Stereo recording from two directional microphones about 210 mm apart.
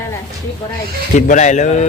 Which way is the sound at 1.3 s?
35° left (ahead or behind).